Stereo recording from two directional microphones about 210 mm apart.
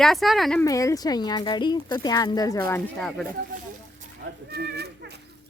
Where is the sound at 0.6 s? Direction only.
15° left (ahead or behind).